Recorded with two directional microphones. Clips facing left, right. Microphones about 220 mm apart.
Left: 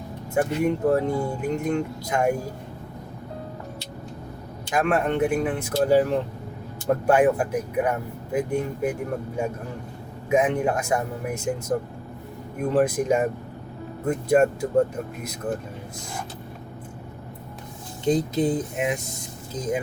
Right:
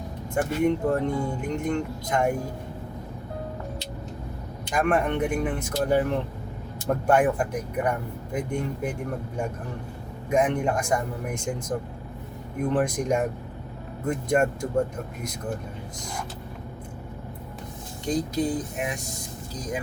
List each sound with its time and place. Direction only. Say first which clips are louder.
0.3 s speech: left 1 dB; 5° left (ahead or behind)
4.7 s speech: left 1 dB; 5° left (ahead or behind)
10.2 s speech: left 2 dB; 5° left (ahead or behind)
18.0 s speech: left 4 dB; 25° left (ahead or behind)